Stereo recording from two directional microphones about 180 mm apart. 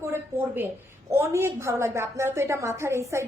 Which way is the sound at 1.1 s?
15° right (ahead or behind).